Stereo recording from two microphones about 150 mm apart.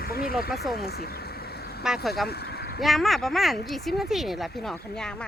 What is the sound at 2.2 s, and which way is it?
Vehicle, 90° left.